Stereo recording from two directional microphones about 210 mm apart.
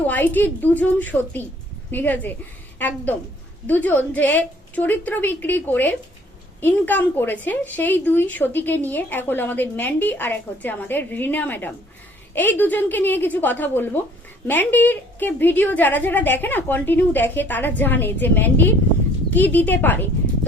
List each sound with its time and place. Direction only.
0.1 s a woman's voice: 10° left (ahead or behind)